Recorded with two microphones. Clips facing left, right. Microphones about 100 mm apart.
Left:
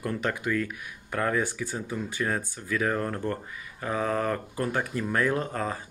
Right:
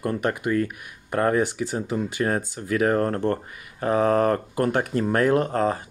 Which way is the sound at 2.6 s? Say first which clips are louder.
Right 7 dB; 55° right (ahead or behind).